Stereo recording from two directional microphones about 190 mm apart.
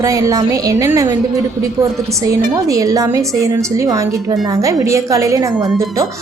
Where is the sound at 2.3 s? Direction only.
15° right (ahead or behind).